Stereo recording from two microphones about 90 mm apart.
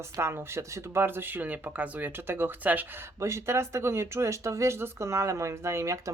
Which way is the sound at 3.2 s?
30° right (ahead or behind).